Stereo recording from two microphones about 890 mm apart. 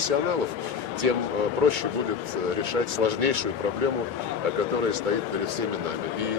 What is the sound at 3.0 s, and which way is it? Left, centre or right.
Speech, right.